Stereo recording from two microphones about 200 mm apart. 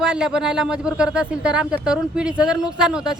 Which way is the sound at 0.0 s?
5° right (ahead or behind).